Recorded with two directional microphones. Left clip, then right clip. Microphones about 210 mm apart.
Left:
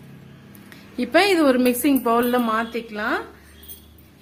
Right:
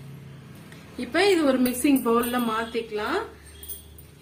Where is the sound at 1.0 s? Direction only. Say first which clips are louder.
Left 4 dB; 55° left (ahead or behind).